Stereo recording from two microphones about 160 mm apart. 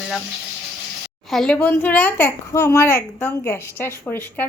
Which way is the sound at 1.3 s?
5° left (ahead or behind).